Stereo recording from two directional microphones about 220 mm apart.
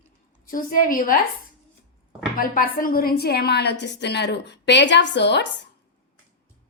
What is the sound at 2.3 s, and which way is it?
A woman's voice, 40° left (ahead or behind).